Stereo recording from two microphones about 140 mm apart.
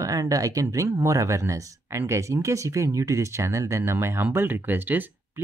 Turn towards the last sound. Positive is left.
turn(degrees=-15)  # may be behind; listen again after turning